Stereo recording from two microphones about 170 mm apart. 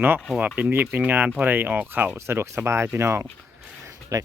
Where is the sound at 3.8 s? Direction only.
20° right (ahead or behind).